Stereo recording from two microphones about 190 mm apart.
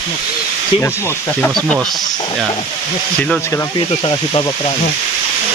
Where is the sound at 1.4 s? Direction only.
Centre (ahead or behind).